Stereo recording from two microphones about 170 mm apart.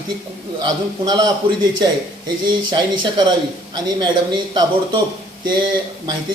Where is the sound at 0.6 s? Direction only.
25° right (ahead or behind).